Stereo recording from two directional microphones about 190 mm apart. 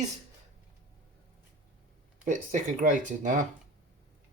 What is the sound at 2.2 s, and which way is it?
Speech, 40° right (ahead or behind).